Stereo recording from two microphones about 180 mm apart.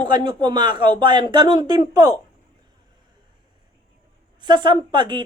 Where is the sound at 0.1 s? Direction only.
25° right (ahead or behind).